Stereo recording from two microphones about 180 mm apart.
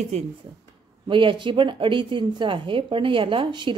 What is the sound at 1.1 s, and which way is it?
A woman's voice, 25° right (ahead or behind).